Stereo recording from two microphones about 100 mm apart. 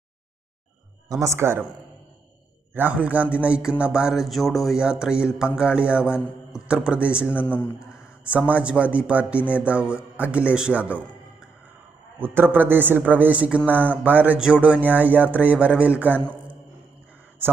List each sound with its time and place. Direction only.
1.0 s a man's voice: 35° right (ahead or behind)
2.7 s a man's voice: 15° right (ahead or behind)